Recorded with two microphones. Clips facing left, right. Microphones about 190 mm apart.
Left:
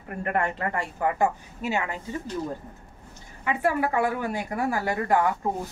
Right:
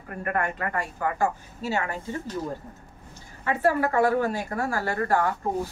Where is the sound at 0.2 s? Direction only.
25° left (ahead or behind).